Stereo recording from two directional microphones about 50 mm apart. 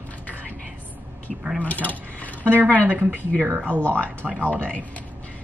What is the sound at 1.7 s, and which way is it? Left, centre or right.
Speech, left.